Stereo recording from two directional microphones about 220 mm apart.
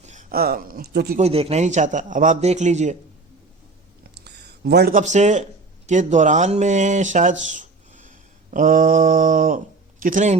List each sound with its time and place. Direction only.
0.0 s speech: 35° right (ahead or behind)
1.2 s a man's voice: 25° right (ahead or behind)
4.1 s a man's voice: 50° right (ahead or behind)